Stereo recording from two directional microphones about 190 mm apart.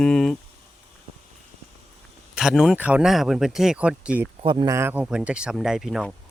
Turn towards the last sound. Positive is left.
turn(degrees=0)  # may be behind; listen again after turning